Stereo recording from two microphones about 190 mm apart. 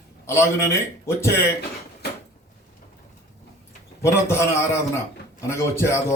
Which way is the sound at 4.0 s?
15° left (ahead or behind).